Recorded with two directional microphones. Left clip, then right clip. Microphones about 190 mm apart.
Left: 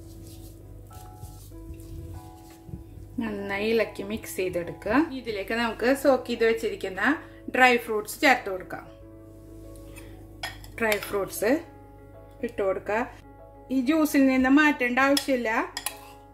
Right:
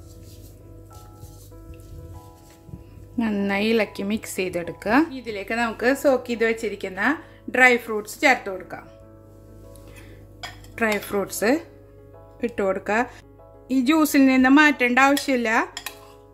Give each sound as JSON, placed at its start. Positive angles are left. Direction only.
{"t": 3.2, "sound": "a woman's voice", "side_deg": -30}
{"t": 5.1, "sound": "a woman's voice", "side_deg": -15}
{"t": 10.8, "sound": "speech", "side_deg": -35}